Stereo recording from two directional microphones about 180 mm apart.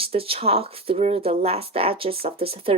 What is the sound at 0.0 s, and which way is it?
A woman's voice, 30° right (ahead or behind).